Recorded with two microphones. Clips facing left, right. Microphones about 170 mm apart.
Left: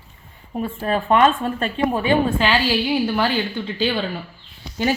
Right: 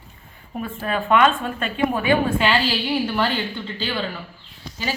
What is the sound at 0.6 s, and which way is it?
A woman's voice, 30° left (ahead or behind).